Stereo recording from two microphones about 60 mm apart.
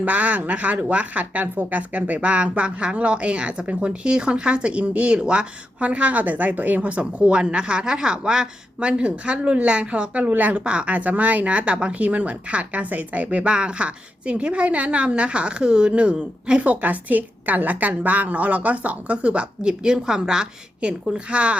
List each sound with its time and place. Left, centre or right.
0.0 s speech: right